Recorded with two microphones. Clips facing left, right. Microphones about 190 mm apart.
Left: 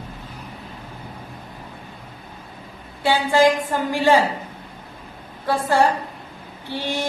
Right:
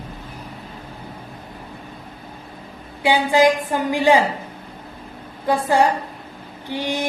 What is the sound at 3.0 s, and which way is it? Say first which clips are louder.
A woman's voice: right 1 dB; 15° right (ahead or behind).